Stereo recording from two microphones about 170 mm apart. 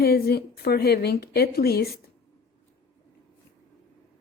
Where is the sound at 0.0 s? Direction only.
65° left (ahead or behind).